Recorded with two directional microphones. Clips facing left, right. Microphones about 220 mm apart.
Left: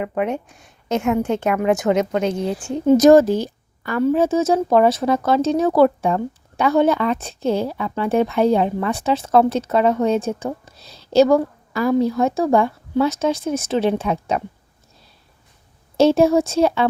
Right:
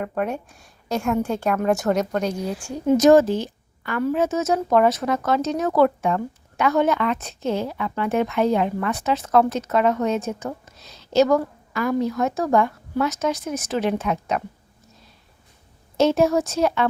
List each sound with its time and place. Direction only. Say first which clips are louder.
0.0 s speech: left 3 dB; 10° left (ahead or behind)
0.6 s a woman's voice: left 4 dB; 20° left (ahead or behind)
1.5 s speech: left 2 dB; 5° left (ahead or behind)
2.2 s a woman's voice: left 4 dB; 25° left (ahead or behind)
16.0 s a woman's voice: left 4 dB; 30° left (ahead or behind)